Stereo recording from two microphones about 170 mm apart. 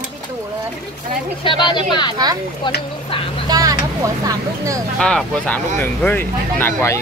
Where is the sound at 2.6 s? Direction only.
25° left (ahead or behind).